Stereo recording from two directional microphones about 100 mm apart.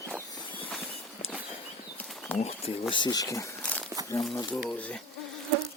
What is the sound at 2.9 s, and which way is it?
Speech, 45° left (ahead or behind).